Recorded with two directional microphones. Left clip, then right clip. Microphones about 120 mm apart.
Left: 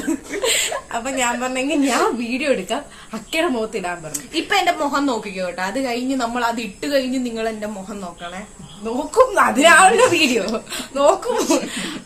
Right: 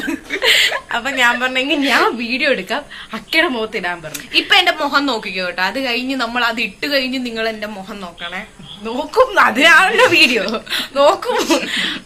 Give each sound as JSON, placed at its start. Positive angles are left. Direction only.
{"t": 0.4, "sound": "a woman's voice", "side_deg": 0}
{"t": 4.4, "sound": "a woman's voice", "side_deg": 35}
{"t": 8.8, "sound": "a woman's voice", "side_deg": -5}